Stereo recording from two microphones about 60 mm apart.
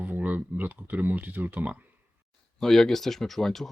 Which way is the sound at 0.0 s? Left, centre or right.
Right.